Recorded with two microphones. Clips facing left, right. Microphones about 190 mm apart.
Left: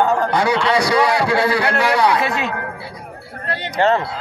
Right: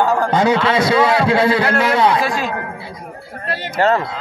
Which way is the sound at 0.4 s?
20° right (ahead or behind).